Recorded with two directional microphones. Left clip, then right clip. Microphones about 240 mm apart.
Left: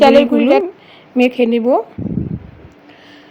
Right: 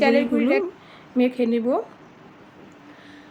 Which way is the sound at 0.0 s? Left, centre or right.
Left.